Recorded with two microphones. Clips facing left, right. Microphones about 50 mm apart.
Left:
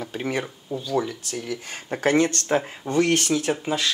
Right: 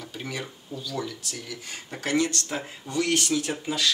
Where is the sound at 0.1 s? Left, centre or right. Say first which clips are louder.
Left 7 dB; left.